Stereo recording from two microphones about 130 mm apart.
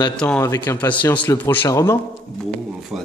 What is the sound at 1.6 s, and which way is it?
Speech, 25° left (ahead or behind).